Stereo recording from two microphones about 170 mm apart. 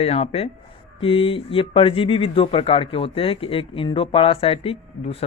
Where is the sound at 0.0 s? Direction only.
35° left (ahead or behind).